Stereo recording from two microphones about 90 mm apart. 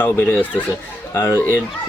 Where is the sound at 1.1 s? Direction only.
35° left (ahead or behind).